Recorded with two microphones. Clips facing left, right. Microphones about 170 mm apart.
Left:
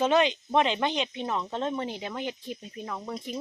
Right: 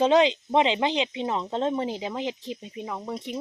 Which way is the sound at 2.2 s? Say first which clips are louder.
Right 3 dB; 90° right.